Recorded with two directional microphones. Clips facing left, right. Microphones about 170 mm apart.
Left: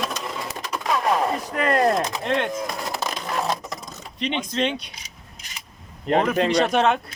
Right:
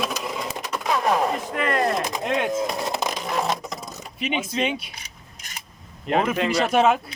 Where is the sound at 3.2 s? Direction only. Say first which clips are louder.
Right 1 dB; 5° right (ahead or behind).